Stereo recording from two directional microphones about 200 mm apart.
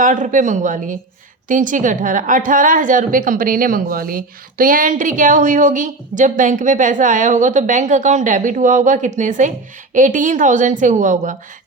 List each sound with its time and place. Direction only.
0.0 s a woman's voice: 40° right (ahead or behind)